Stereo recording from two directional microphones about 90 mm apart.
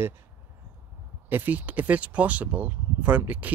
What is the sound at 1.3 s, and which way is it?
Speech, 20° right (ahead or behind).